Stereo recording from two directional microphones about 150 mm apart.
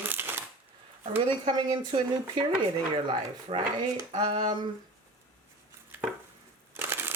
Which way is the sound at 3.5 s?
45° right (ahead or behind).